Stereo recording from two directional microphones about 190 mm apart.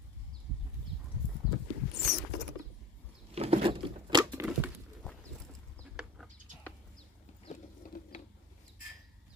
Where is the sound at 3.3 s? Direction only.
30° right (ahead or behind).